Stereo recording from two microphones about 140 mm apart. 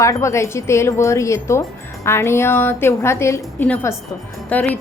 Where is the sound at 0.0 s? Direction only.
20° left (ahead or behind).